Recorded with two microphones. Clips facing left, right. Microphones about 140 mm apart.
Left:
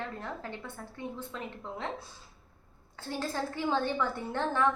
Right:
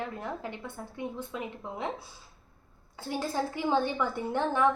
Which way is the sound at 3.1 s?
15° right (ahead or behind).